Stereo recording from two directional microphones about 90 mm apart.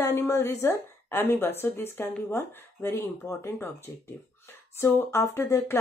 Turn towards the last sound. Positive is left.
turn(degrees=30)  # may be behind; listen again after turning